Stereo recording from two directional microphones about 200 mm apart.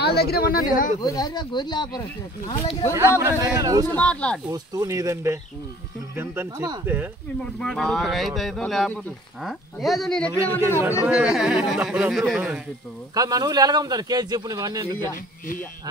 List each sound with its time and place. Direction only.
0.0 s speech: 50° left (ahead or behind)
1.0 s speech: 20° left (ahead or behind)
2.9 s speech: 15° right (ahead or behind)
3.8 s speech: 5° left (ahead or behind)
4.5 s speech: 15° right (ahead or behind)
7.5 s speech: 5° left (ahead or behind)
13.1 s speech: 20° right (ahead or behind)